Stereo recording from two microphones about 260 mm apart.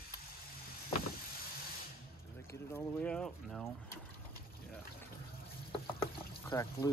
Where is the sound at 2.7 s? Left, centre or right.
Centre.